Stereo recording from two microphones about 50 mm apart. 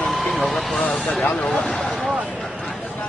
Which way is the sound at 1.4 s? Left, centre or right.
Centre.